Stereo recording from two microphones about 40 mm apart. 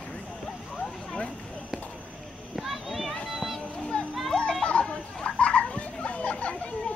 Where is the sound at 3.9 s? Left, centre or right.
Left.